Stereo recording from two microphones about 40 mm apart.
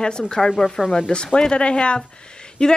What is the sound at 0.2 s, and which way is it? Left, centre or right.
Speech, centre.